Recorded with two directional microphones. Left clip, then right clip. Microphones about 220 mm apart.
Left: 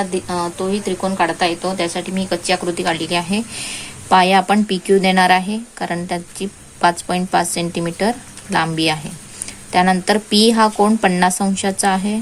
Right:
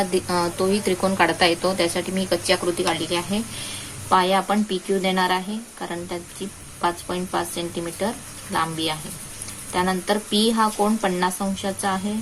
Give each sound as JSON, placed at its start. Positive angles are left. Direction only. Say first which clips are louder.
{"t": 0.0, "sound": "a woman's voice", "louder": "left 1 dB", "side_deg": 10}